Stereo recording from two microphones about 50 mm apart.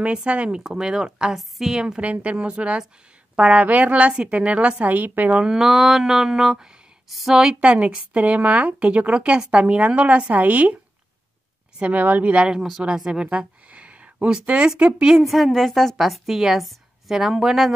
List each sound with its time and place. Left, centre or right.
0.0 s a woman's voice: right
0.7 s speech: centre
1.8 s a woman's voice: right
5.3 s speech: centre
7.6 s a woman's voice: right
11.8 s speech: right
12.8 s a woman's voice: centre
15.2 s a woman's voice: centre